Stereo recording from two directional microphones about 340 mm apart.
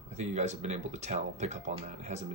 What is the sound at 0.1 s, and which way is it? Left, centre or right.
Speech, centre.